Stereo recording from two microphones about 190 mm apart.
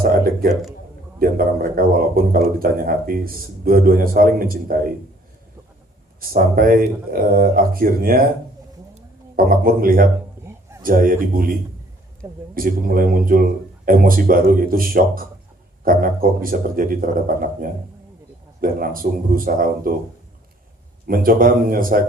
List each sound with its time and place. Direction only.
0.0 s a sound: 50° right (ahead or behind)
1.2 s speech: 50° right (ahead or behind)
6.1 s speech: 50° right (ahead or behind)
9.3 s speech: 50° right (ahead or behind)
10.4 s a sound: 15° right (ahead or behind)
10.8 s speech: 45° right (ahead or behind)
12.2 s speech: 15° right (ahead or behind)
12.5 s speech: 50° right (ahead or behind)
21.1 s speech: 45° right (ahead or behind)